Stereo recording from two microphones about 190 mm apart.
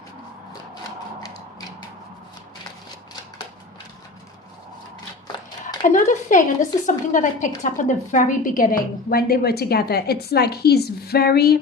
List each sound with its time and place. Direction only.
5.9 s a woman's voice: 40° left (ahead or behind)